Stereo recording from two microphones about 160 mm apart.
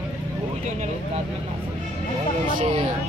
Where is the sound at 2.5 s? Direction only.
35° right (ahead or behind).